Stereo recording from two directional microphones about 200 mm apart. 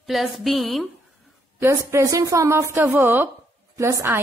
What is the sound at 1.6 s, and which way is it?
A woman's voice, 10° right (ahead or behind).